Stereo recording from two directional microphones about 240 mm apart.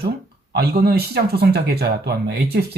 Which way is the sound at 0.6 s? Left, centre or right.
Right.